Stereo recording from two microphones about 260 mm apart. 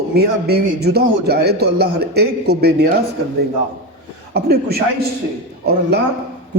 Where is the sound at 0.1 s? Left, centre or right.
Right.